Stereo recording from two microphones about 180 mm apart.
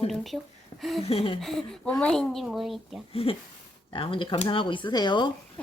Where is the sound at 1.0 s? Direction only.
35° left (ahead or behind).